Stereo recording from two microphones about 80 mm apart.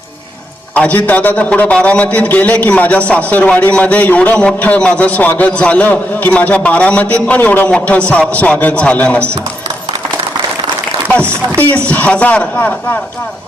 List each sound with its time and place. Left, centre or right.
0.8 s a man's voice: centre
11.9 s a man's voice: centre